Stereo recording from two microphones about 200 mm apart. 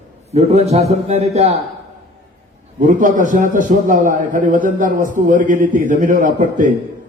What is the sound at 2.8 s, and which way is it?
A man's voice, 40° right (ahead or behind).